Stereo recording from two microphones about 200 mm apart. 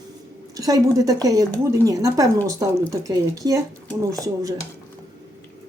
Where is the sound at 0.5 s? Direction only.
15° right (ahead or behind).